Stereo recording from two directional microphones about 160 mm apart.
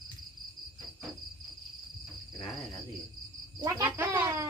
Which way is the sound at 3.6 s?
20° right (ahead or behind).